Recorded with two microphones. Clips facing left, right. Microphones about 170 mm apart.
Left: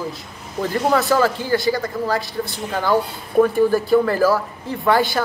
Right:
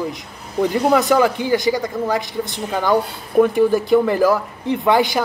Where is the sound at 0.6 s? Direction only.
15° right (ahead or behind).